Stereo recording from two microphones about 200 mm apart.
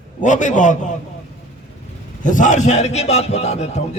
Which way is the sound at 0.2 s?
40° left (ahead or behind).